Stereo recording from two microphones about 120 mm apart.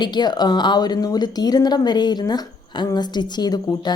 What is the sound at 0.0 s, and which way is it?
A woman's voice, 40° left (ahead or behind).